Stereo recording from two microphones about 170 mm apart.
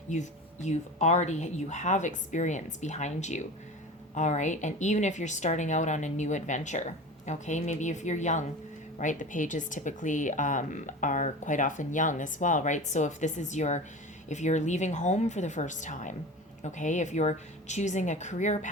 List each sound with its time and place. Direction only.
0.1 s a woman's voice: 45° left (ahead or behind)